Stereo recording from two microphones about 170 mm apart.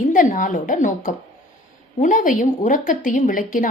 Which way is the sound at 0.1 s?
50° left (ahead or behind).